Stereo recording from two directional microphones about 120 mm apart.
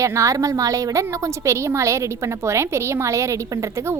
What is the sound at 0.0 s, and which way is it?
A woman's voice, 25° right (ahead or behind).